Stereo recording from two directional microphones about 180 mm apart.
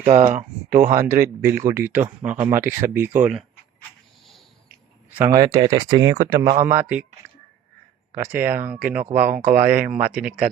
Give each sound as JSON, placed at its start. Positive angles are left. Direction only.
{"t": 0.0, "sound": "speech", "side_deg": -30}
{"t": 0.3, "sound": "speech", "side_deg": -50}
{"t": 1.0, "sound": "speech", "side_deg": -15}
{"t": 5.2, "sound": "speech", "side_deg": -20}
{"t": 8.1, "sound": "speech", "side_deg": -15}